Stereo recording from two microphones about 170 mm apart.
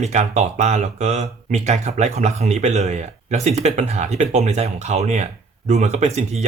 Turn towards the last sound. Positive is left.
turn(degrees=-40)  # may be behind; listen again after turning